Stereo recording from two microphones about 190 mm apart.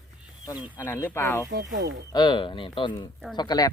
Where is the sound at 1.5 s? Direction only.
80° right.